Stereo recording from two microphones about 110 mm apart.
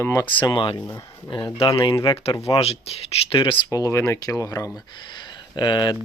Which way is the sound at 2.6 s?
65° left (ahead or behind).